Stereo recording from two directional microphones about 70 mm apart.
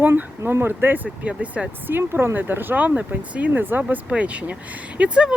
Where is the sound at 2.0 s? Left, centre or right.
Right.